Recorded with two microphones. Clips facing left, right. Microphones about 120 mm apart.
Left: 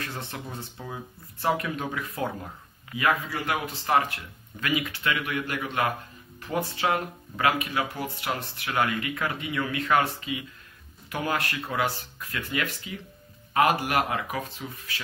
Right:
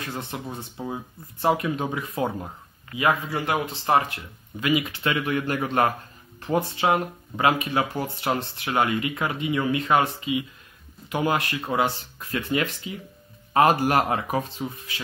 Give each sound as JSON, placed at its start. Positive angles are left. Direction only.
{"t": 0.1, "sound": "speech", "side_deg": -15}
{"t": 6.4, "sound": "speech", "side_deg": -25}